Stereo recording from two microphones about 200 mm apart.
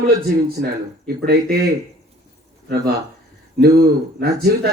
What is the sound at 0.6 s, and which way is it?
Speech, 55° right (ahead or behind).